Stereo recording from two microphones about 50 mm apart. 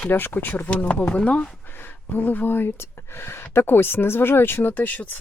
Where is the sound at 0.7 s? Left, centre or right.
Left.